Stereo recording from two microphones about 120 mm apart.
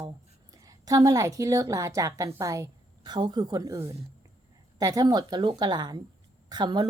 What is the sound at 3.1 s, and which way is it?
A woman's voice, 40° right (ahead or behind).